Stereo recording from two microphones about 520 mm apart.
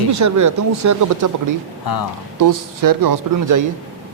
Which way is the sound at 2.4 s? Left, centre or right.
Right.